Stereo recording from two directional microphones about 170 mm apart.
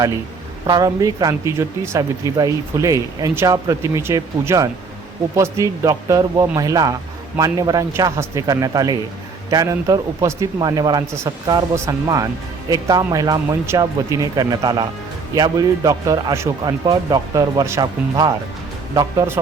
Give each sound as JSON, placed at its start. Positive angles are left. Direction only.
{"t": 0.7, "sound": "speech", "side_deg": -20}